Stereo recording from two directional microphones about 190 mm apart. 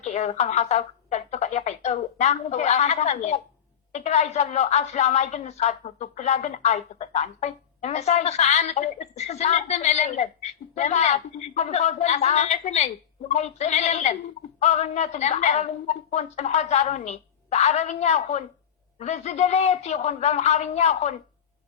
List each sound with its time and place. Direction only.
0.0 s a woman's voice: 40° left (ahead or behind)